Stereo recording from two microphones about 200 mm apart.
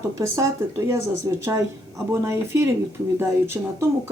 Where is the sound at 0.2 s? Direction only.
15° right (ahead or behind).